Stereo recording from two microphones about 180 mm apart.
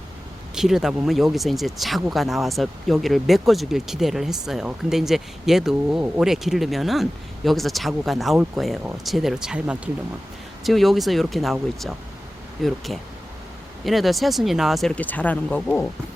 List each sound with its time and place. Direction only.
0.5 s speech: 5° right (ahead or behind)